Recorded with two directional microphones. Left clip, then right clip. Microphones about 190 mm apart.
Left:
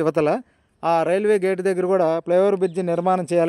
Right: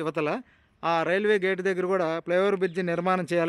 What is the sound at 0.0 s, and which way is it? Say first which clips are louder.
Speech: left 9 dB; 35° left (ahead or behind).